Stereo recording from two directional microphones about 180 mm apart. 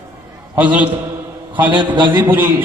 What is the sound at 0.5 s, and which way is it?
Speech, 10° right (ahead or behind).